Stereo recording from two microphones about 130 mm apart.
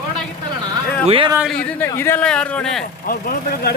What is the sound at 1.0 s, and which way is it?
Speech, 45° right (ahead or behind).